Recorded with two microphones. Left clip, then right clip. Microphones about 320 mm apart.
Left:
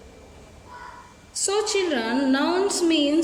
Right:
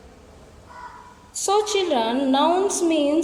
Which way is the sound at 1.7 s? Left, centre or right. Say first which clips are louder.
Right 3 dB; right.